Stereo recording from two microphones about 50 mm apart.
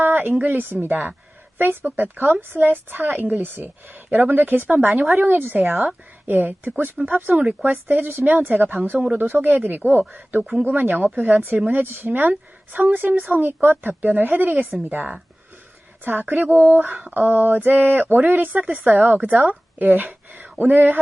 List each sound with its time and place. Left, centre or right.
0.0 s a sound: right
0.4 s speech: right
10.4 s speech: centre
10.8 s speech: right